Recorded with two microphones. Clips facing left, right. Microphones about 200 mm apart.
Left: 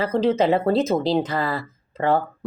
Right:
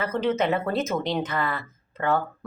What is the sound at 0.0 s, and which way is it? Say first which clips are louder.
Speech: left 5 dB; 30° left (ahead or behind).